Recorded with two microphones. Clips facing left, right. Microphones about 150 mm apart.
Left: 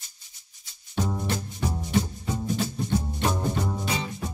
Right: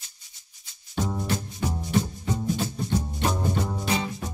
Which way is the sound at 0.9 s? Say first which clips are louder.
Even; centre (ahead or behind).